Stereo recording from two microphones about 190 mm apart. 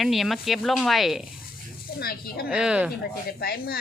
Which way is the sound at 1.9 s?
55° left (ahead or behind).